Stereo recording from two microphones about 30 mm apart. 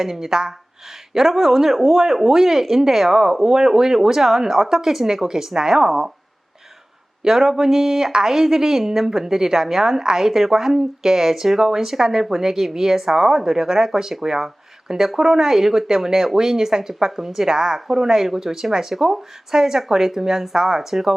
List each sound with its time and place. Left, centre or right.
0.0 s speech: centre
7.2 s speech: centre
10.0 s a woman's voice: right
10.2 s speech: centre